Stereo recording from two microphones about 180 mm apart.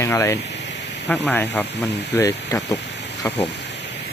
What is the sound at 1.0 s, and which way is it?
Speech, 5° left (ahead or behind).